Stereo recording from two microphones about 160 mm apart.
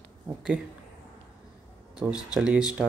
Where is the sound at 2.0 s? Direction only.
5° right (ahead or behind).